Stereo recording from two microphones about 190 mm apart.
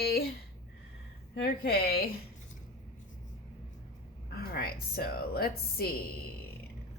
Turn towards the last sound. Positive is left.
turn(degrees=55)  # may be behind; listen again after turning